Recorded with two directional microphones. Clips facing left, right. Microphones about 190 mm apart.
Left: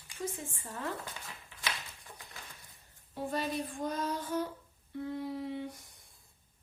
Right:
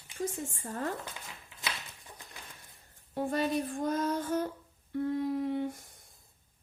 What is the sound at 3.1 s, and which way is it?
A woman's voice, 50° right (ahead or behind).